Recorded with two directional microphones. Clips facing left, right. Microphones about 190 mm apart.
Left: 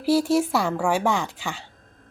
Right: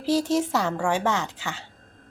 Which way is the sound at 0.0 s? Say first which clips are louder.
Left 3 dB; 10° left (ahead or behind).